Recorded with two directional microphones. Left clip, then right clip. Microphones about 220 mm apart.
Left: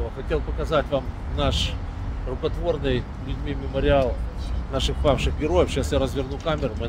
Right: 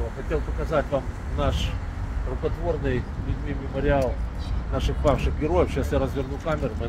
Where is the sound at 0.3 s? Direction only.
15° left (ahead or behind).